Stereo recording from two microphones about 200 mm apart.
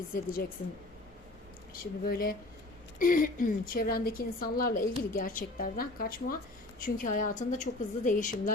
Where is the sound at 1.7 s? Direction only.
50° left (ahead or behind).